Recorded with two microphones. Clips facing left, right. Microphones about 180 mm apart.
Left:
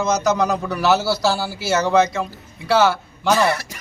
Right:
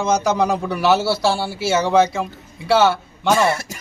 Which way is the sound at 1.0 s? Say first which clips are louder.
Right 1 dB; 25° right (ahead or behind).